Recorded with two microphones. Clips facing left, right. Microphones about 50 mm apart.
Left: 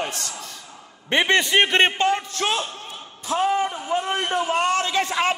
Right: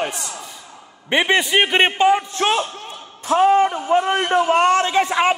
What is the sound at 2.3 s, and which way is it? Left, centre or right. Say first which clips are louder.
Speech: right 5 dB; right.